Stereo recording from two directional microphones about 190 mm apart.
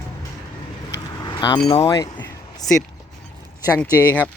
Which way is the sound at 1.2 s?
25° left (ahead or behind).